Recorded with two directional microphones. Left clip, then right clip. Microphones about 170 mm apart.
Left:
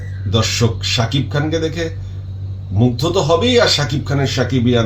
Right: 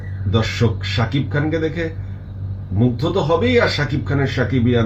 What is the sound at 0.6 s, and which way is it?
Speech, 20° left (ahead or behind).